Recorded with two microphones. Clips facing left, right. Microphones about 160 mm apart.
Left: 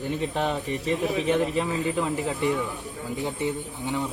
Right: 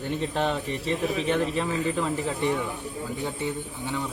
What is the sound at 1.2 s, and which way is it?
Speech, 15° left (ahead or behind).